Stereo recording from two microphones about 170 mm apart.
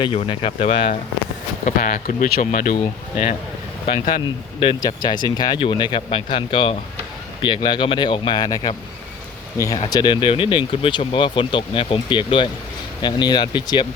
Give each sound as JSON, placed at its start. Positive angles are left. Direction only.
{"t": 0.0, "sound": "speech", "side_deg": 30}
{"t": 1.6, "sound": "speech", "side_deg": 50}
{"t": 3.8, "sound": "speech", "side_deg": 45}
{"t": 4.6, "sound": "speech", "side_deg": 25}
{"t": 9.7, "sound": "speech", "side_deg": 25}